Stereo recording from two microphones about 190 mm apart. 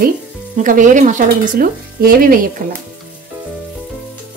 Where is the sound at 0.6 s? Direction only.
40° right (ahead or behind).